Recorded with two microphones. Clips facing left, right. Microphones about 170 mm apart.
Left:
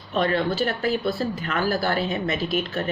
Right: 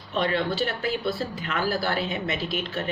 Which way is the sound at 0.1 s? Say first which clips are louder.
Left 3 dB; 45° left (ahead or behind).